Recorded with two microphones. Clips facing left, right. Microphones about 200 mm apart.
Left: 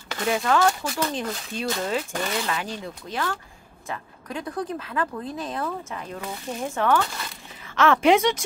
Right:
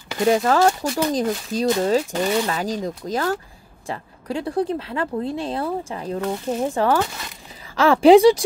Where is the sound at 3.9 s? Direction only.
30° right (ahead or behind).